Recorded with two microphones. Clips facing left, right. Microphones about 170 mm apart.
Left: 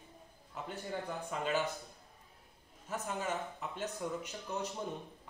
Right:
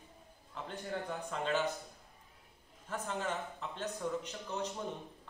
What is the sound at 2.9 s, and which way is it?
A man's voice, 10° left (ahead or behind).